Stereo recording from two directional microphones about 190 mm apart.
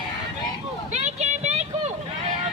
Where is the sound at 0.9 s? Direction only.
35° right (ahead or behind).